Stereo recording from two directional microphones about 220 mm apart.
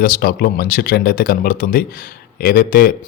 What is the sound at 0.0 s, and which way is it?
Speech, 40° left (ahead or behind).